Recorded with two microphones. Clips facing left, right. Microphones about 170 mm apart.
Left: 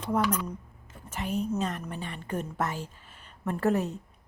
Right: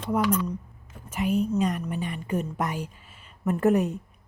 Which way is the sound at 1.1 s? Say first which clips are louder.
Right 5 dB; 10° right (ahead or behind).